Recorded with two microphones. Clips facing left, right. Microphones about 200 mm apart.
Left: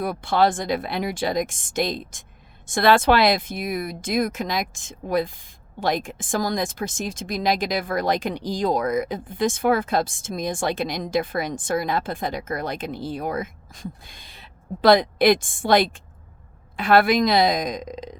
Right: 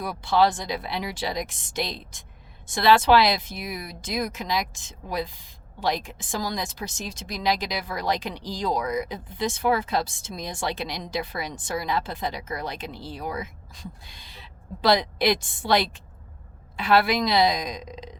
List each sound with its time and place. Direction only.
0.0 s speech: 55° left (ahead or behind)